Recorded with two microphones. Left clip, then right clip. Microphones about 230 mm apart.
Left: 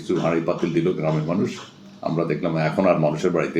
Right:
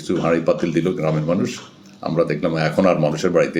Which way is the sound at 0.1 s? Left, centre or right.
Right.